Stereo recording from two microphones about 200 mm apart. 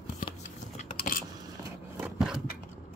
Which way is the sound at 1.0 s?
45° left (ahead or behind).